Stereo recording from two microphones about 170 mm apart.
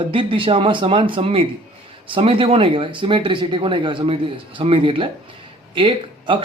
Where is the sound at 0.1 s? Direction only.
30° right (ahead or behind).